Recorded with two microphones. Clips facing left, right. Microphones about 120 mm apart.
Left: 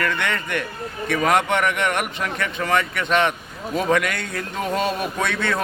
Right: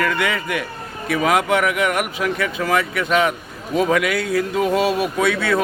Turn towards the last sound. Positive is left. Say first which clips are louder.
# right 5 dB
turn(degrees=-5)  # may be behind; listen again after turning